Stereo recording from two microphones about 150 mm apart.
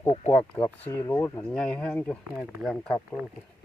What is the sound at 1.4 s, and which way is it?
Speech, 5° left (ahead or behind).